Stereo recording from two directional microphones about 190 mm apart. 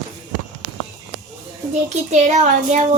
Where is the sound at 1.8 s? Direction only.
40° right (ahead or behind).